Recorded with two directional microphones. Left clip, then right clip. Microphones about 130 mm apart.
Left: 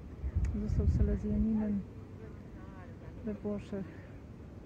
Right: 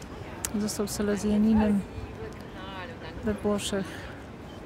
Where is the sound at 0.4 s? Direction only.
35° right (ahead or behind).